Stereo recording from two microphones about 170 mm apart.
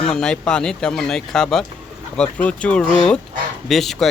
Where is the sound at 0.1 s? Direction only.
5° left (ahead or behind).